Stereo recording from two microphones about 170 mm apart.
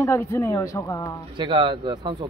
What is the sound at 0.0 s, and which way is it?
Speech, 15° left (ahead or behind).